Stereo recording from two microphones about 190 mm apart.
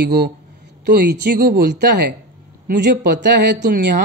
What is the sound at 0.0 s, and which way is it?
Speech, 55° right (ahead or behind).